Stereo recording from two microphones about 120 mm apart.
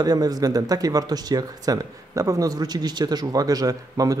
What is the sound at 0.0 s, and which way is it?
Speech, 30° right (ahead or behind).